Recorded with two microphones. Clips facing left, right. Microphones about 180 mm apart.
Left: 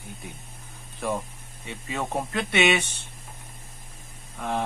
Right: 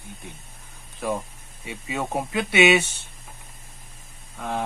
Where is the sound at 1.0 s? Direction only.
5° right (ahead or behind).